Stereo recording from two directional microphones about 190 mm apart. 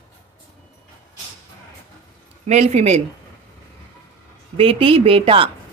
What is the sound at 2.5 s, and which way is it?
Speech, 35° right (ahead or behind).